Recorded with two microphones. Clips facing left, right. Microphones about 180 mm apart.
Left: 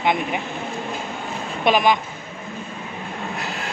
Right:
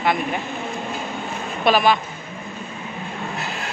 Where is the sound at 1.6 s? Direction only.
15° left (ahead or behind).